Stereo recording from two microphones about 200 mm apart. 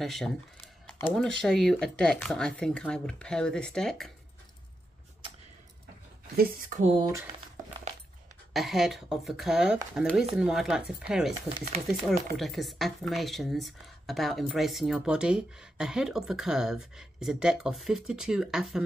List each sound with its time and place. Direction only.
0.0 s speech: centre (ahead or behind)
6.3 s speech: 45° right (ahead or behind)
7.0 s speech: 15° right (ahead or behind)
8.5 s speech: centre (ahead or behind)
12.4 s speech: centre (ahead or behind)